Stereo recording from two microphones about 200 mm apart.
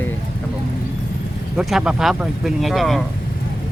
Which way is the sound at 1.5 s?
5° right (ahead or behind).